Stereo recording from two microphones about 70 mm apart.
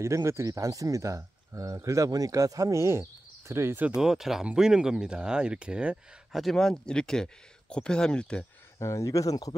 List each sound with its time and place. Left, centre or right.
0.0 s speech: right
2.0 s speech: right
4.0 s speech: centre
6.3 s speech: centre
8.7 s speech: left